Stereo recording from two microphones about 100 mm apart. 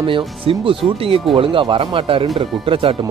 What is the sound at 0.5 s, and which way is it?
Speech, 65° right (ahead or behind).